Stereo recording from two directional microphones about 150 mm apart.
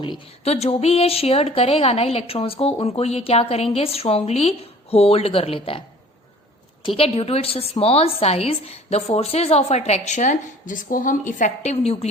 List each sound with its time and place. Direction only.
0.4 s a woman's voice: 45° left (ahead or behind)
6.8 s a woman's voice: 40° left (ahead or behind)